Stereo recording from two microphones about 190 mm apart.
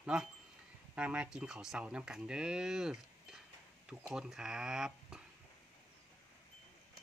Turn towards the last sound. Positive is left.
turn(degrees=-5)  # may be behind; listen again after turning